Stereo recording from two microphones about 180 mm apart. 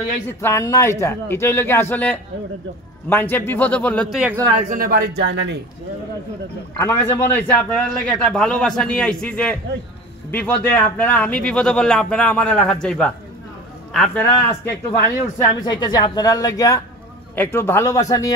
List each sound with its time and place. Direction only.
0.3 s a man's voice: 15° left (ahead or behind)
4.6 s speech: 55° right (ahead or behind); by 5.6 s 75° right (ahead or behind)
6.8 s a man's voice: 15° left (ahead or behind)
14.2 s a man's voice: 15° left (ahead or behind)